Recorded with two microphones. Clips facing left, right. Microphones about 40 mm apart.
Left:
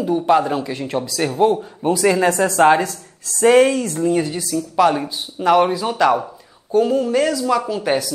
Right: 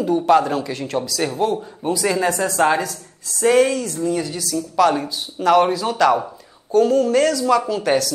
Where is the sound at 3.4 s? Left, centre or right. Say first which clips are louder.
Left 3 dB; left.